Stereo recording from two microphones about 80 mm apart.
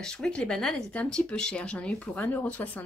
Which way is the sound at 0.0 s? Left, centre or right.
Centre.